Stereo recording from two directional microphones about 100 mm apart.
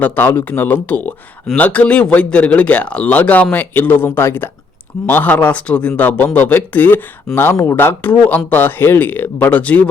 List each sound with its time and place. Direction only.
0.0 s speech: 20° left (ahead or behind)